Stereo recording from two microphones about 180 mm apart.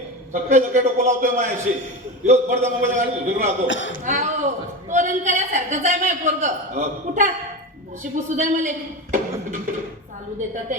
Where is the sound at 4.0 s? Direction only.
45° right (ahead or behind).